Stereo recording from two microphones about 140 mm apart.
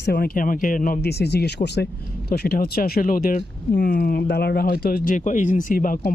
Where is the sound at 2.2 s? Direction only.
90° left.